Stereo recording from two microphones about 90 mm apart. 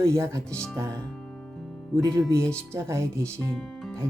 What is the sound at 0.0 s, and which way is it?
Speech, 30° right (ahead or behind).